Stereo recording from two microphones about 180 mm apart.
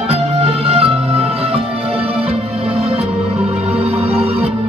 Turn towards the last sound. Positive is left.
turn(degrees=-35)  # may be behind; listen again after turning